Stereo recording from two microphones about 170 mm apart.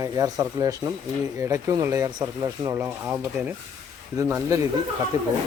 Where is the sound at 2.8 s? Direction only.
10° right (ahead or behind).